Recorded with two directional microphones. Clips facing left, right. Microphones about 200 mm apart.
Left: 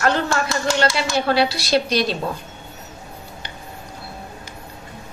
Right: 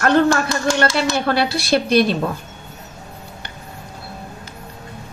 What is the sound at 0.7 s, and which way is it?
Speech, 55° right (ahead or behind).